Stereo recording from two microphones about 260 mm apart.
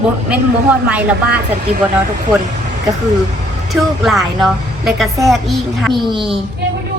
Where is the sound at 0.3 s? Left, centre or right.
Centre.